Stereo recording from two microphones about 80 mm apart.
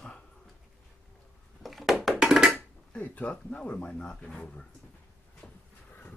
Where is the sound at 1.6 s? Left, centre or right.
Centre.